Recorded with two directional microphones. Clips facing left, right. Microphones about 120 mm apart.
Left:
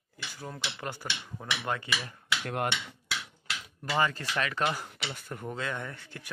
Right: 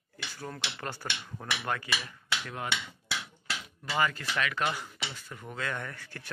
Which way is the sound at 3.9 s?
30° left (ahead or behind).